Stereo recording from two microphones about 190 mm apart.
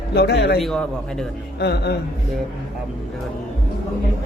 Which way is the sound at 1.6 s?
60° left (ahead or behind).